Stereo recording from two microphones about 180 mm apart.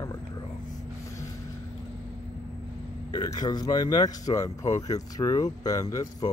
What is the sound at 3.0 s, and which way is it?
Speech, 20° left (ahead or behind).